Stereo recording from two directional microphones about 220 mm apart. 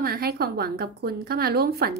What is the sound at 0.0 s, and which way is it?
Speech, 45° right (ahead or behind).